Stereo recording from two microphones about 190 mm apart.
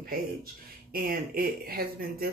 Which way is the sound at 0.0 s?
50° right (ahead or behind).